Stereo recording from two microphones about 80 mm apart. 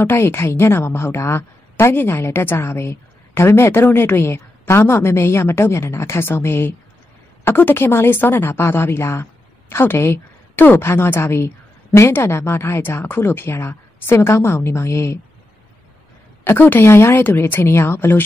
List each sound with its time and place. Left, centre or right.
0.0 s a woman's voice: left
16.4 s a woman's voice: left